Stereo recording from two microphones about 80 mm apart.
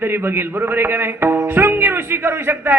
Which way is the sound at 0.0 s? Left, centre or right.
Right.